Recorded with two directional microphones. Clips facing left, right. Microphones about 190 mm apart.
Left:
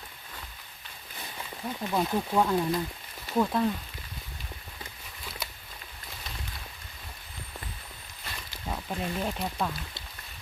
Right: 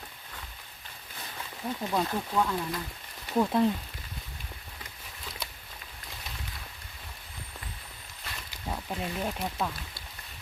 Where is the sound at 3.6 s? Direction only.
20° right (ahead or behind).